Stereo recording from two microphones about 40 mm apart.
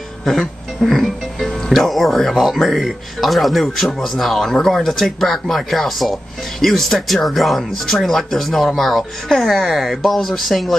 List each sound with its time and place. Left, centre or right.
0.8 s speech: centre